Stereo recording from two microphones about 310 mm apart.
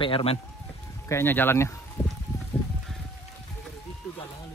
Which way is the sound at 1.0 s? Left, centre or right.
Centre.